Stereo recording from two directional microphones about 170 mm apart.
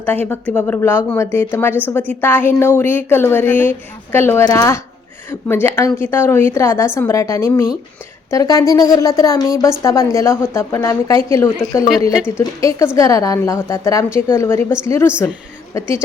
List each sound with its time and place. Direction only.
0.0 s a woman's voice: 10° left (ahead or behind)
12.4 s a woman's voice: 20° left (ahead or behind)